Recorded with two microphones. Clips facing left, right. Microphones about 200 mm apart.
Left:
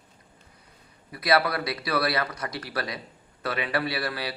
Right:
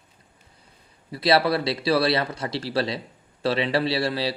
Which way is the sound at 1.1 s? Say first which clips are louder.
Right 4 dB; 25° right (ahead or behind).